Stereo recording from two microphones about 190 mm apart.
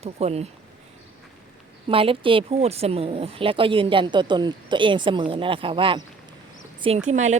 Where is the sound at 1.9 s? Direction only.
30° right (ahead or behind).